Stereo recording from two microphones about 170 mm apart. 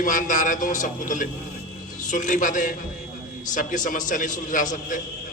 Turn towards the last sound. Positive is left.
turn(degrees=50)  # may be behind; listen again after turning